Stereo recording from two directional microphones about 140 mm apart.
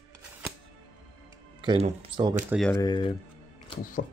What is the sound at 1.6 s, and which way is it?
Speech, 40° right (ahead or behind).